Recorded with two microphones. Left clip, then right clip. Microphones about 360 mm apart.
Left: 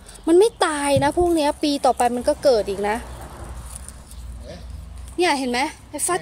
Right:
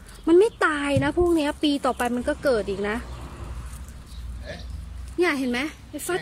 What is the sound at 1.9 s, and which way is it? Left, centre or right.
Speech, left.